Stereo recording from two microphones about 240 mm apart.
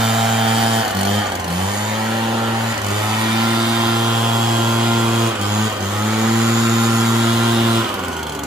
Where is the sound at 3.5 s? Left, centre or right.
Centre.